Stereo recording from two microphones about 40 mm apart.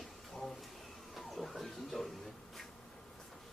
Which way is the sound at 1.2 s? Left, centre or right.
Centre.